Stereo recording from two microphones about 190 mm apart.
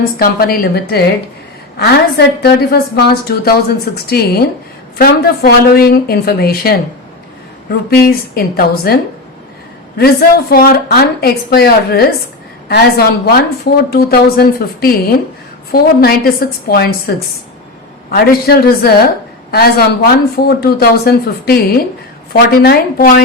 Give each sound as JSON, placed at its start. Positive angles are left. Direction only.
{"t": 0.2, "sound": "a woman's voice", "side_deg": 50}
{"t": 7.9, "sound": "speech", "side_deg": 55}
{"t": 10.5, "sound": "a woman's voice", "side_deg": 50}